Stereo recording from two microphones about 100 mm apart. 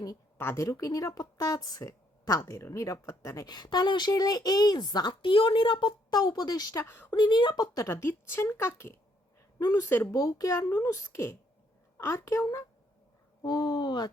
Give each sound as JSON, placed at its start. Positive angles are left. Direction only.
{"t": 0.3, "sound": "speech", "side_deg": 25}
{"t": 3.4, "sound": "speech", "side_deg": 45}
{"t": 7.1, "sound": "a woman's voice", "side_deg": 50}
{"t": 10.1, "sound": "a woman's voice", "side_deg": 35}
{"t": 13.4, "sound": "speech", "side_deg": 45}